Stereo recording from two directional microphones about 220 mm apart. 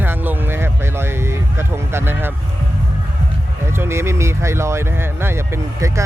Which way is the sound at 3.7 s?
10° right (ahead or behind).